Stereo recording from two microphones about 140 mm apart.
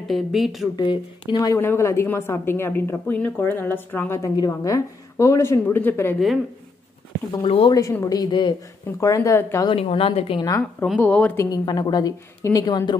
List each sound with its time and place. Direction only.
0.1 s speech: centre (ahead or behind)
0.7 s a woman's voice: 35° left (ahead or behind); by 6.1 s 15° left (ahead or behind)
6.1 s speech: centre (ahead or behind)
7.4 s speech: 45° left (ahead or behind)
7.7 s a woman's voice: 20° left (ahead or behind)
9.0 s a woman's voice: 25° left (ahead or behind)
9.7 s a woman's voice: 45° left (ahead or behind)
11.0 s a woman's voice: 10° left (ahead or behind)
11.3 s a woman's voice: 30° left (ahead or behind)